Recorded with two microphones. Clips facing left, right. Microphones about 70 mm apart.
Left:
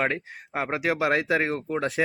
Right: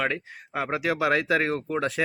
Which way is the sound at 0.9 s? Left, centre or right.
Left.